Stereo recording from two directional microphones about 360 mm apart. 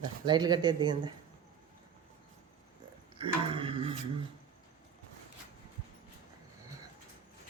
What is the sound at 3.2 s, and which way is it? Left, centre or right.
Speech, centre.